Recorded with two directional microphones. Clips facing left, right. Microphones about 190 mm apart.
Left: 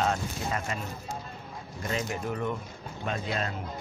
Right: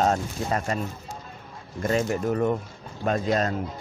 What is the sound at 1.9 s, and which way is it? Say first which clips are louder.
Speech: right 8 dB; 45° right (ahead or behind).